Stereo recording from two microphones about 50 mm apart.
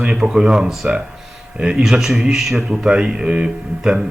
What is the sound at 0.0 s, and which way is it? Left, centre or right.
A man's voice, centre.